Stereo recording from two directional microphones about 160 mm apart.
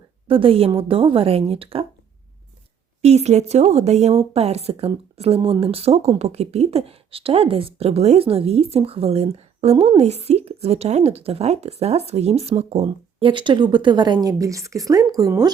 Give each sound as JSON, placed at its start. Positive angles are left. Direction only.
{"t": 0.3, "sound": "speech", "side_deg": -35}
{"t": 3.0, "sound": "speech", "side_deg": -45}